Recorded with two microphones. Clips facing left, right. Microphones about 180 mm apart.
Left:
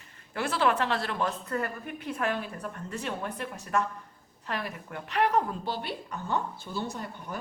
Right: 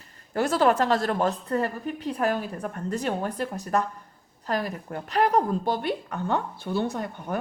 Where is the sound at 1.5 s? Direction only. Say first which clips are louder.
Right 6 dB; 35° right (ahead or behind).